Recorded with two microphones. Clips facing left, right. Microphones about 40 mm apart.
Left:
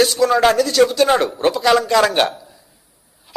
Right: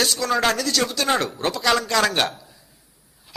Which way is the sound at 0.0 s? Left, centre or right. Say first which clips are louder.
Left 7 dB; centre.